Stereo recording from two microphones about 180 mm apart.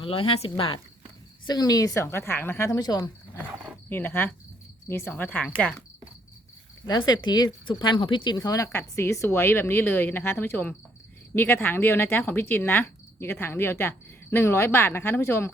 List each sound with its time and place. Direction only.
0.0 s speech: 30° left (ahead or behind); by 5.7 s 5° left (ahead or behind)
6.8 s speech: 20° left (ahead or behind)